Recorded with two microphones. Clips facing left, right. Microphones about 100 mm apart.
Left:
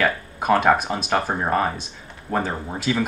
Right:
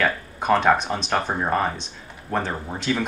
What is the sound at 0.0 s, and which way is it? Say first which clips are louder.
Speech: left 1 dB; 5° left (ahead or behind).